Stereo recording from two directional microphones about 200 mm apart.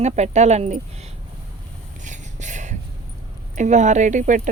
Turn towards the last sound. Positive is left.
turn(degrees=-40)  # may be behind; listen again after turning